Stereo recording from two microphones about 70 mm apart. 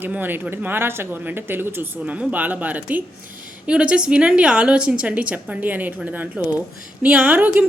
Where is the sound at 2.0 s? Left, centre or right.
Centre.